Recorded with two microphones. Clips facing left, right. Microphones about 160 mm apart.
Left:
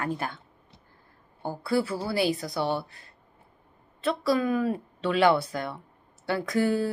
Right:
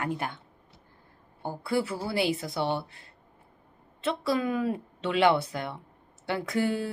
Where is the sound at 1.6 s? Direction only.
20° right (ahead or behind).